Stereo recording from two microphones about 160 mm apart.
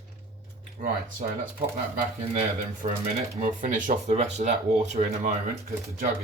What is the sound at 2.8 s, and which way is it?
Speech, 45° right (ahead or behind).